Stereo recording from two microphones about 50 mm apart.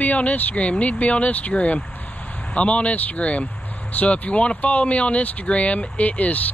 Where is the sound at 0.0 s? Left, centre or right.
Left.